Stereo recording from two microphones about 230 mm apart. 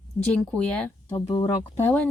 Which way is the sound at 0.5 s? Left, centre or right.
Centre.